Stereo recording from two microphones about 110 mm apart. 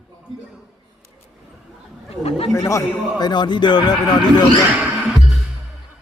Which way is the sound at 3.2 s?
40° left (ahead or behind).